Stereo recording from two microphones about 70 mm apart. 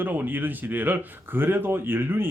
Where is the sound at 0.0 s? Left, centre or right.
Right.